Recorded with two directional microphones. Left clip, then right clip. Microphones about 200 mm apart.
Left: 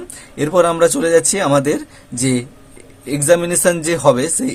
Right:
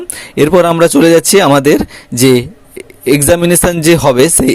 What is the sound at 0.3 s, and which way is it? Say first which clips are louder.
Speech: right 6 dB; 40° right (ahead or behind).